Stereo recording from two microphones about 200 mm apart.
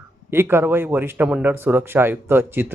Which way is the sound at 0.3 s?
10° right (ahead or behind).